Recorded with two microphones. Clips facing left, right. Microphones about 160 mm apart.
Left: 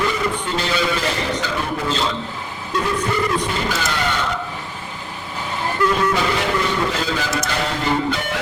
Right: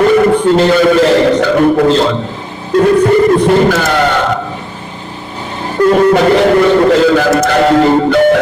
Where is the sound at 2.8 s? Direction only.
55° right (ahead or behind).